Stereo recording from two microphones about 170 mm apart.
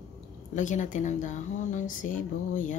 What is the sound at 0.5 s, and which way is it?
Speech, 45° left (ahead or behind).